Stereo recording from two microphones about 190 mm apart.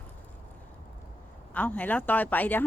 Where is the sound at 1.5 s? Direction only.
10° left (ahead or behind).